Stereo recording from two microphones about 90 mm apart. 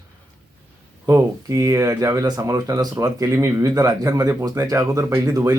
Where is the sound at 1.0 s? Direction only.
35° right (ahead or behind).